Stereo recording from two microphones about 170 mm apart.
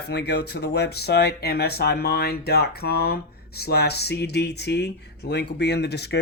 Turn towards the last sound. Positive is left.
turn(degrees=80)